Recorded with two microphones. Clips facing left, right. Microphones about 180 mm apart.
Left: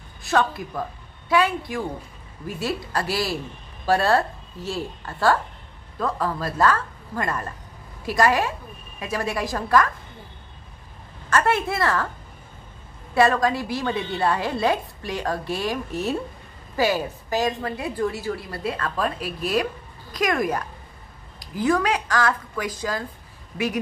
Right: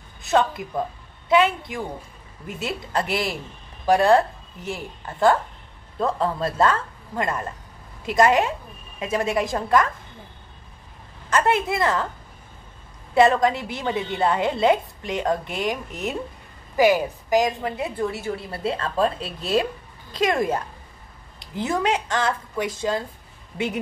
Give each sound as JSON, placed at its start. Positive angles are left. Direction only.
{"t": 0.2, "sound": "a woman's voice", "side_deg": -20}
{"t": 11.2, "sound": "a woman's voice", "side_deg": -20}
{"t": 13.1, "sound": "a woman's voice", "side_deg": -20}